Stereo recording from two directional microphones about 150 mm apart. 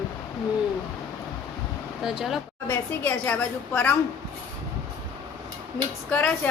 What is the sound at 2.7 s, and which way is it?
A woman's voice, 10° left (ahead or behind).